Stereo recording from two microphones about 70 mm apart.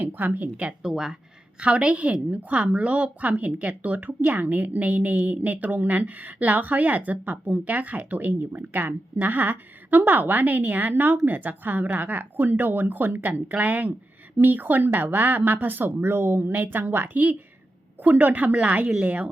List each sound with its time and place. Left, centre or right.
0.0 s a woman's voice: right
0.7 s a woman's voice: centre